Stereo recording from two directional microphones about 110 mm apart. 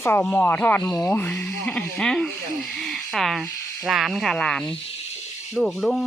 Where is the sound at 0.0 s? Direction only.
20° left (ahead or behind).